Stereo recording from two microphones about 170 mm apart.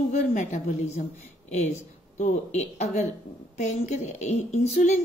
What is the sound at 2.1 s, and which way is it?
Speech, 45° left (ahead or behind).